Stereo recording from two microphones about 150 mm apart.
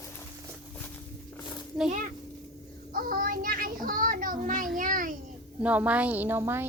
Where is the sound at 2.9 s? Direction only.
70° right (ahead or behind).